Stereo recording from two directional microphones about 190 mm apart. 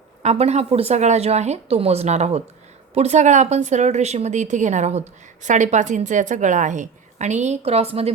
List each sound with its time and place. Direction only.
0.2 s speech: 35° right (ahead or behind)